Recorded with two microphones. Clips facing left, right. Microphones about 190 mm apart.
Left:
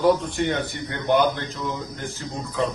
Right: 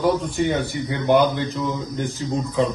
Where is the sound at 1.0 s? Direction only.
15° right (ahead or behind).